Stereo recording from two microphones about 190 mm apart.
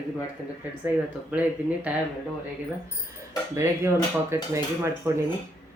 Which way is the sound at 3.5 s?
15° right (ahead or behind).